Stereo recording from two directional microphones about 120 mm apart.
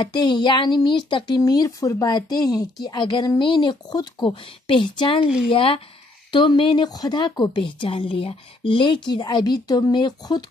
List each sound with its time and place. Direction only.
0.0 s a woman's voice: 40° left (ahead or behind)
5.2 s speech: 5° right (ahead or behind)
5.5 s a woman's voice: 50° left (ahead or behind)